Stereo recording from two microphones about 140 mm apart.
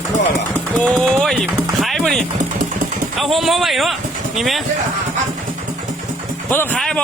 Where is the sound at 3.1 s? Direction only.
Centre (ahead or behind).